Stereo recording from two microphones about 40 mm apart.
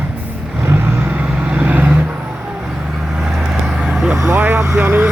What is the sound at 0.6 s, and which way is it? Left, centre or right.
Vehicle, right.